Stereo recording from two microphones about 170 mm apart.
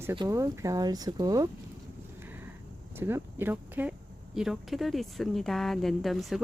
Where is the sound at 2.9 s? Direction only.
15° right (ahead or behind).